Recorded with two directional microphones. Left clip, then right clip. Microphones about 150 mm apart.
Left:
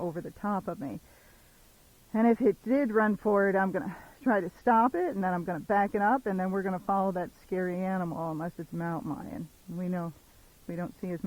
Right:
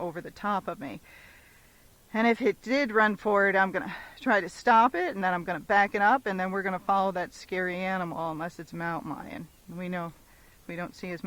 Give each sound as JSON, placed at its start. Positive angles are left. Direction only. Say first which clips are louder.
{"t": 0.0, "sound": "speech", "louder": "right 2 dB", "side_deg": -35}
{"t": 2.1, "sound": "speech", "louder": "even", "side_deg": -30}